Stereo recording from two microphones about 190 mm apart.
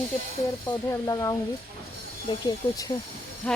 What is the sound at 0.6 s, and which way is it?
Speech, 15° left (ahead or behind).